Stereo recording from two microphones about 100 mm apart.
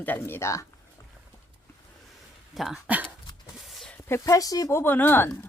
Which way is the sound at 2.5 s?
Centre (ahead or behind).